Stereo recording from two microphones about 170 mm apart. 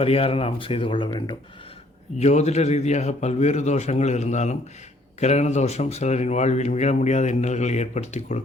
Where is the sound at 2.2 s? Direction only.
40° left (ahead or behind).